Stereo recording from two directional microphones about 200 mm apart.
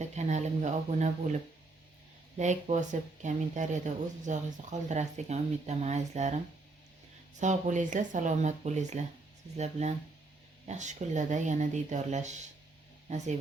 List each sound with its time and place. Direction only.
0.0 s speech: 35° right (ahead or behind)
2.4 s speech: 35° right (ahead or behind)